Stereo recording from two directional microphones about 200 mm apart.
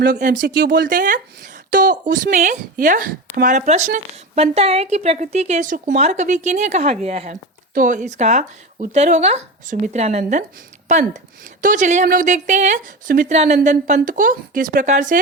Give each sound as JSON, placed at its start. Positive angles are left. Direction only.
{"t": 0.0, "sound": "speech", "side_deg": -40}
{"t": 0.3, "sound": "speech", "side_deg": -60}